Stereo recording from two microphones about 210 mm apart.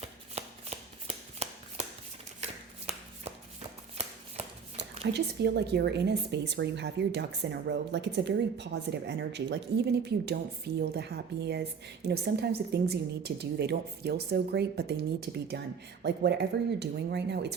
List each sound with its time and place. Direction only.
0.3 s shuffling cards: 30° right (ahead or behind)
2.9 s a sound: 30° right (ahead or behind)
5.1 s a woman's voice: 55° right (ahead or behind)